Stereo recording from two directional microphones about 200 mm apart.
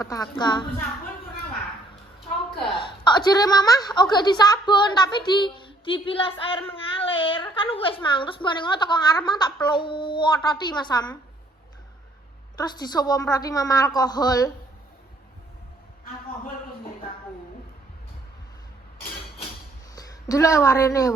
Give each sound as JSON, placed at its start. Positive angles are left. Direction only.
{"t": 0.0, "sound": "a woman's voice", "side_deg": 15}
{"t": 2.2, "sound": "a sound", "side_deg": 25}
{"t": 4.1, "sound": "a woman's voice", "side_deg": 20}
{"t": 12.5, "sound": "a woman's voice", "side_deg": 20}
{"t": 20.0, "sound": "a woman's voice", "side_deg": 15}